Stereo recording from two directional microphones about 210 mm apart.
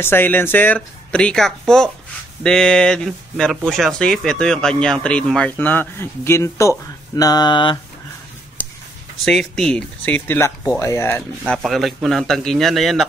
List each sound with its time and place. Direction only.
0.0 s speech: 10° left (ahead or behind)
7.2 s mantra: 20° left (ahead or behind)
9.2 s speech: centre (ahead or behind)